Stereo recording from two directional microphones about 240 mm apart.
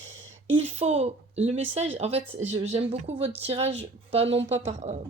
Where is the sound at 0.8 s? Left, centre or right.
Right.